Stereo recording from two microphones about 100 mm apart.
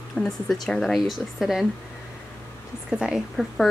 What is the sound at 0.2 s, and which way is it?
Speech, 5° left (ahead or behind).